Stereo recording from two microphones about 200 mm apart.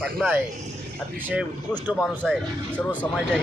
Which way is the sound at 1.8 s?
10° right (ahead or behind).